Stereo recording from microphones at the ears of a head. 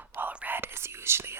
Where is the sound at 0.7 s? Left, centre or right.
Right.